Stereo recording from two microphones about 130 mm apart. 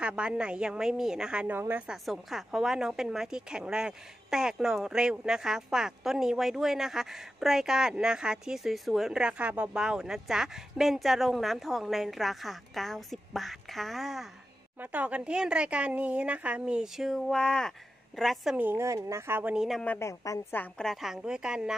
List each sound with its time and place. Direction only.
0.0 s speech: 10° right (ahead or behind)
1.9 s a woman's voice: centre (ahead or behind)
14.8 s speech: 10° right (ahead or behind)
19.5 s a woman's voice: 5° right (ahead or behind)
20.0 s a woman's voice: 20° left (ahead or behind); by 21.7 s 5° right (ahead or behind)